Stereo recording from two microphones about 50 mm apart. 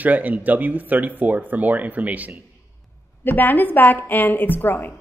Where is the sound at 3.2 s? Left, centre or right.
Left.